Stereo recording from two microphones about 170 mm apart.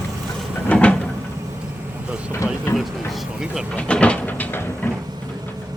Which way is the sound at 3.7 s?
5° left (ahead or behind).